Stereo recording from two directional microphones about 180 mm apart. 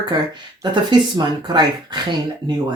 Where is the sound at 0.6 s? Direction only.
25° right (ahead or behind).